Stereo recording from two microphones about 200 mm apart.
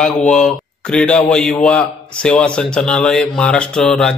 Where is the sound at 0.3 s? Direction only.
5° left (ahead or behind).